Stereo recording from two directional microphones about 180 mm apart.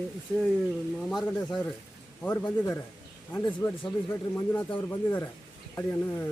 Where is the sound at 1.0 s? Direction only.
Centre (ahead or behind).